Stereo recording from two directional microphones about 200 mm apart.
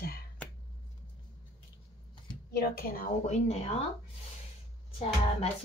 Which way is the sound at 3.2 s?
35° left (ahead or behind).